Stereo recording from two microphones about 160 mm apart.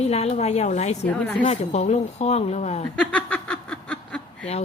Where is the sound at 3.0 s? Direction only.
5° left (ahead or behind).